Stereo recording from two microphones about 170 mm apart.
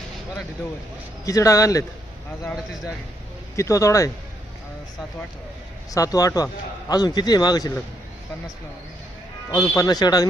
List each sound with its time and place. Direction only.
1.2 s a man's voice: 20° left (ahead or behind)
5.9 s a man's voice: 20° left (ahead or behind)
9.5 s a man's voice: 20° left (ahead or behind)